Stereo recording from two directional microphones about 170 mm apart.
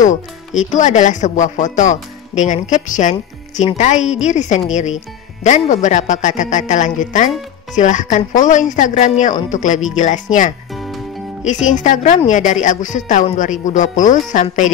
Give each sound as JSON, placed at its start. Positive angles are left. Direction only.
{"t": 0.6, "sound": "speech", "side_deg": 45}
{"t": 10.7, "sound": "music", "side_deg": 0}
{"t": 11.4, "sound": "speech", "side_deg": 45}